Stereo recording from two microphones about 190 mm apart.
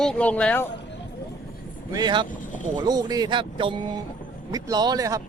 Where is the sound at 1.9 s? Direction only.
25° right (ahead or behind).